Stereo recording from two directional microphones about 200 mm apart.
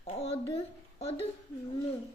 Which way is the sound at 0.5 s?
30° left (ahead or behind).